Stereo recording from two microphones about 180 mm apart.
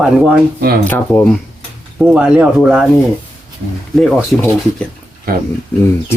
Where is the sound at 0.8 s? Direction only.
10° left (ahead or behind).